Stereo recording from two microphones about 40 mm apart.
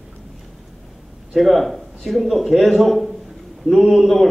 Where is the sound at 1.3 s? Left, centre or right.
Centre.